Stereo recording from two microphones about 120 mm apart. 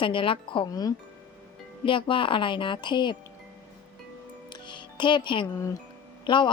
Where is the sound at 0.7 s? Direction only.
30° left (ahead or behind).